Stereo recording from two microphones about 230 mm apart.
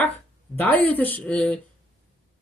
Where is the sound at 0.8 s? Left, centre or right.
Centre.